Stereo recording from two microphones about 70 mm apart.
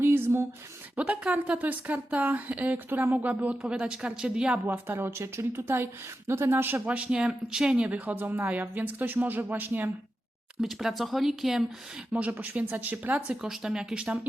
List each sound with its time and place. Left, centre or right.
0.0 s a sound: right
0.9 s speech: centre
4.9 s a woman's voice: right
6.8 s speech: centre
7.9 s speech: right
10.6 s speech: centre
12.1 s speech: right